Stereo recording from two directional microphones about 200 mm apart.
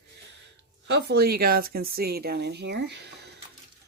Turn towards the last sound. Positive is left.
turn(degrees=-55)  # may be behind; listen again after turning